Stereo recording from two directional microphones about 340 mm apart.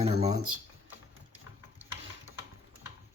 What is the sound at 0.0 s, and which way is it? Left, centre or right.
Speech, centre.